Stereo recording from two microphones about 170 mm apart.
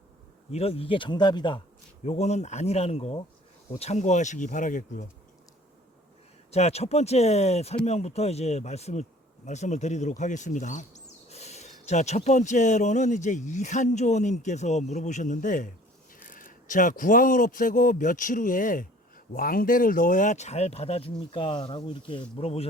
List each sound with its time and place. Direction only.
0.5 s speech: 35° left (ahead or behind)
2.0 s speech: 40° left (ahead or behind)
6.5 s speech: 40° left (ahead or behind)